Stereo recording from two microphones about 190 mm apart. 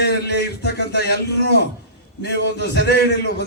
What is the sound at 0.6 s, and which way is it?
Speech, 60° left (ahead or behind).